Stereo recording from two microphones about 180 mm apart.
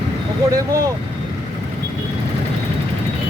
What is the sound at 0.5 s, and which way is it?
Speech, 20° right (ahead or behind).